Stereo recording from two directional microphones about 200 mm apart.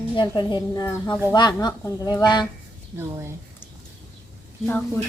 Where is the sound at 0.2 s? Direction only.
20° left (ahead or behind).